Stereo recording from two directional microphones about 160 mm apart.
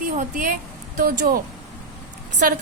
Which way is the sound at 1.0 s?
65° right (ahead or behind).